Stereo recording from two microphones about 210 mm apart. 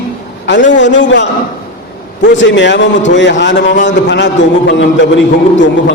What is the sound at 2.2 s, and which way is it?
A man's voice, 60° left (ahead or behind).